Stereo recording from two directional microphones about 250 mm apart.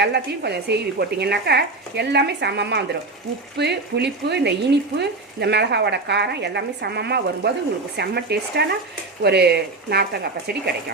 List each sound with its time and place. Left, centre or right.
0.0 s speech: right